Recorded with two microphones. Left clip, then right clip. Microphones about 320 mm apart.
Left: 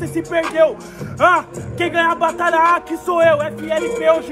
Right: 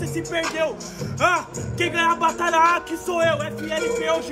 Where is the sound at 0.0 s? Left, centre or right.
Centre.